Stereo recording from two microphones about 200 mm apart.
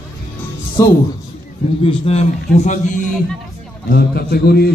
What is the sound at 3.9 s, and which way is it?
Speech, 50° left (ahead or behind).